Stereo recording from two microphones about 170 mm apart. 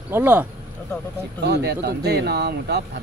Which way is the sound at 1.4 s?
75° right (ahead or behind).